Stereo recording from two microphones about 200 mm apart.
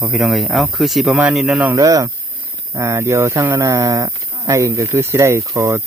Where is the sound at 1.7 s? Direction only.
15° right (ahead or behind).